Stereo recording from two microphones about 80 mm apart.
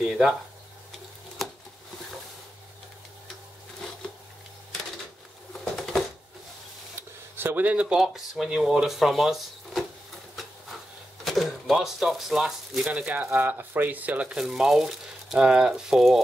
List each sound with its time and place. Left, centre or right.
0.0 s speech: centre
1.4 s a sound: centre
5.5 s a sound: centre
7.3 s speech: right; by 9.8 s centre
11.2 s speech: centre
13.0 s speech: right; by 16.2 s centre